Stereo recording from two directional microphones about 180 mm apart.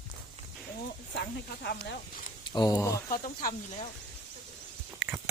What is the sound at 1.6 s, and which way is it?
Speech, 60° left (ahead or behind).